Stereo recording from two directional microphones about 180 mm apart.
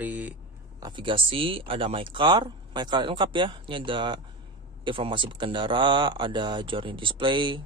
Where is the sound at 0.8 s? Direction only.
25° right (ahead or behind).